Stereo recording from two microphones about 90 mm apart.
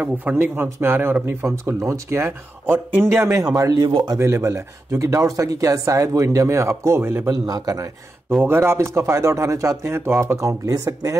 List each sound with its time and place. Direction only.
0.0 s speech: 20° right (ahead or behind); by 3.9 s 40° right (ahead or behind)
4.2 s speech: 30° right (ahead or behind)
7.2 s speech: 45° right (ahead or behind)
8.4 s speech: 25° right (ahead or behind)